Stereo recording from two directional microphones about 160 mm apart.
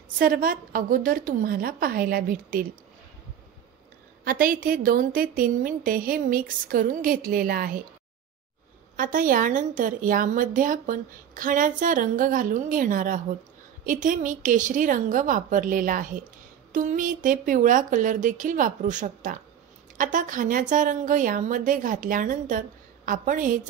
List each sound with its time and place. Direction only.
0.2 s a woman's voice: 60° right (ahead or behind)
4.2 s a woman's voice: 65° right (ahead or behind)
8.9 s a woman's voice: 60° right (ahead or behind)